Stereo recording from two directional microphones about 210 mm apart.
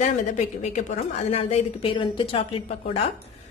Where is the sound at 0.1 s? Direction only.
35° left (ahead or behind).